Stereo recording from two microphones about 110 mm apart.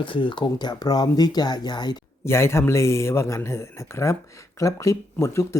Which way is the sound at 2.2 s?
25° left (ahead or behind).